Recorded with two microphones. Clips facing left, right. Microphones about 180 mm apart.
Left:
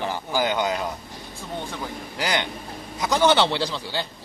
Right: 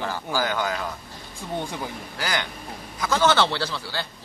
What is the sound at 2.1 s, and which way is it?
A man's voice, 20° left (ahead or behind).